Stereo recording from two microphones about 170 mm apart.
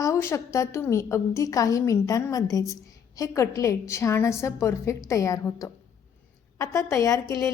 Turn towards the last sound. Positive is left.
turn(degrees=20)  # may be behind; listen again after turning